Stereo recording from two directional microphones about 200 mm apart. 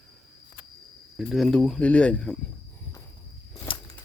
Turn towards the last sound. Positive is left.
turn(degrees=20)  # may be behind; listen again after turning